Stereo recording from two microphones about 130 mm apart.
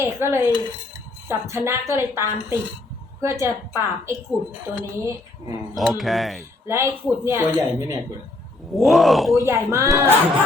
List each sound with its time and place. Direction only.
0.0 s a woman's voice: 20° right (ahead or behind)
5.7 s speech: centre (ahead or behind)
6.7 s a woman's voice: 20° right (ahead or behind)
8.7 s speech: centre (ahead or behind)
9.4 s a woman's voice: 25° right (ahead or behind)